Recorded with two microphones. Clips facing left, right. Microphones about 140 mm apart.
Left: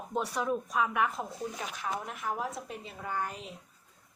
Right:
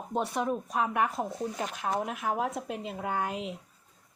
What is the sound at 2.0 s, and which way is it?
A woman's voice, 75° right (ahead or behind).